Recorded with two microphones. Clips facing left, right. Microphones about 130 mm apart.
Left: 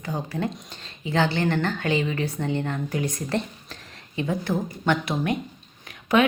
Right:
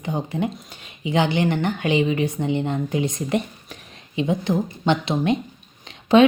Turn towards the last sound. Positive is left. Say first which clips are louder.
# right 6 dB
turn(degrees=-25)  # may be behind; listen again after turning